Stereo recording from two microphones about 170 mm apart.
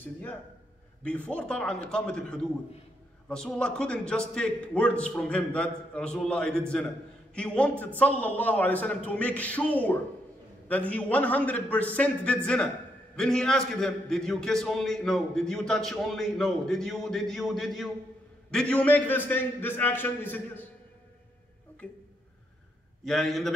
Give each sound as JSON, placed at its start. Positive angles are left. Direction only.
{"t": 0.0, "sound": "a man's voice", "side_deg": 10}
{"t": 23.0, "sound": "a man's voice", "side_deg": 0}